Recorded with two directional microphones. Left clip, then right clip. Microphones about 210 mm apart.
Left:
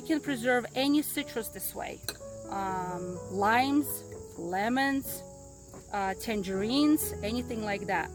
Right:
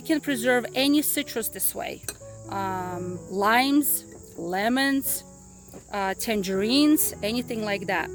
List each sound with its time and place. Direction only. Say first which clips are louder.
0.1 s speech: right 5 dB; 45° right (ahead or behind)